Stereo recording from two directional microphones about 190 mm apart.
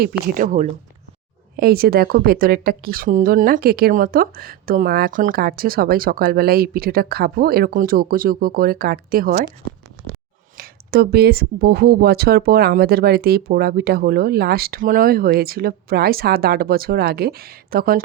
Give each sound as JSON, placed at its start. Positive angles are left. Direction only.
{"t": 0.0, "sound": "a woman's voice", "side_deg": -50}
{"t": 10.6, "sound": "a woman's voice", "side_deg": -55}